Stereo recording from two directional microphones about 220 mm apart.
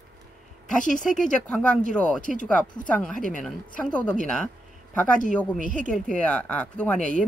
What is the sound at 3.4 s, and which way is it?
Speech, 5° left (ahead or behind).